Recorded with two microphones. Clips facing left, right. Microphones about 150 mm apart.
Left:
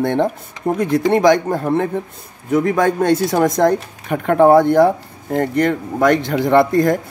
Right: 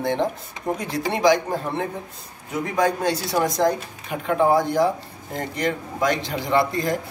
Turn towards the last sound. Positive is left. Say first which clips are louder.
# left 8 dB
turn(degrees=50)  # may be behind; listen again after turning